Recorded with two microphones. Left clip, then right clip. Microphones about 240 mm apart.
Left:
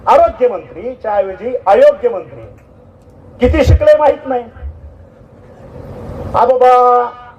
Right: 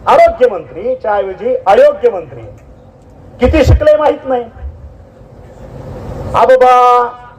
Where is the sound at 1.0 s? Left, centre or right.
Right.